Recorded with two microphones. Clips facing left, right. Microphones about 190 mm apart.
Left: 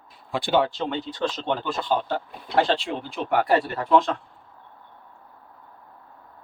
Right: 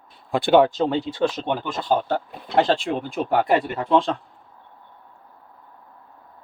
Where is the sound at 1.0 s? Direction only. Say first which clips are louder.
Right 4 dB; 10° right (ahead or behind).